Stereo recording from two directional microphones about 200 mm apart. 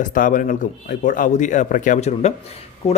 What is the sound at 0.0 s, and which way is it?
Speech, 40° left (ahead or behind).